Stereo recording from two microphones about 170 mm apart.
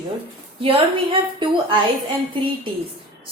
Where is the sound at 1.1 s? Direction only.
30° right (ahead or behind).